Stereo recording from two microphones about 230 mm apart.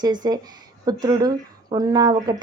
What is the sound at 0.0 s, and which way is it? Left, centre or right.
A woman's voice, centre.